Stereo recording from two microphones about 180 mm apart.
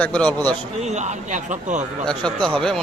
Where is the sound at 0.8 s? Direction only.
40° right (ahead or behind).